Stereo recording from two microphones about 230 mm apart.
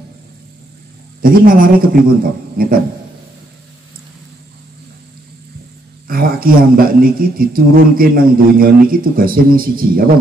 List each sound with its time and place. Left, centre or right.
1.2 s a man's voice: right
6.0 s a man's voice: right